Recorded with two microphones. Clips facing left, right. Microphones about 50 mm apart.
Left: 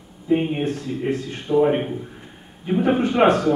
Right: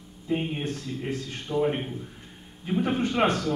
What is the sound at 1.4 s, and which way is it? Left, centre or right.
A man's voice, centre.